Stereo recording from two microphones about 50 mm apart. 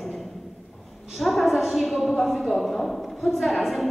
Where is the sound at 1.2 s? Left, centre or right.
Centre.